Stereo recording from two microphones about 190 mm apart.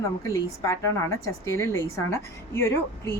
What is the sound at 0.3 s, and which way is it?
A woman's voice, 15° left (ahead or behind).